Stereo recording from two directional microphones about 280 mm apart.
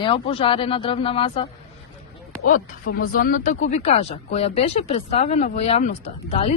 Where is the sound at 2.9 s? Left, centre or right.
Left.